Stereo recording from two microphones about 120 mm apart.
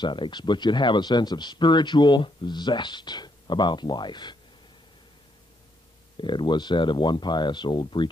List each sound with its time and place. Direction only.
0.0 s speech: 40° left (ahead or behind)
6.1 s speech: 40° left (ahead or behind)